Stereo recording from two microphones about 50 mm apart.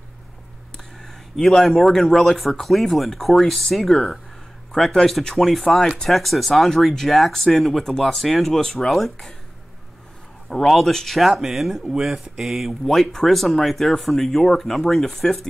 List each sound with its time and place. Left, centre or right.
1.0 s a man's voice: centre
10.5 s a man's voice: centre
12.8 s a man's voice: centre